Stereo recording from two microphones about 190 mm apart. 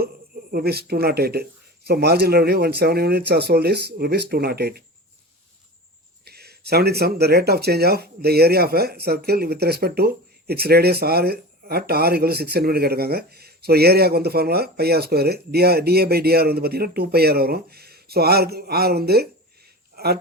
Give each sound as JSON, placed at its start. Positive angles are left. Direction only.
{"t": 0.5, "sound": "speech", "side_deg": -55}
{"t": 6.2, "sound": "speech", "side_deg": -55}